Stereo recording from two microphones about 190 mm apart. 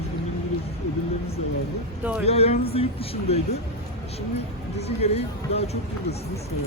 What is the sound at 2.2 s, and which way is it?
Speech, 35° left (ahead or behind).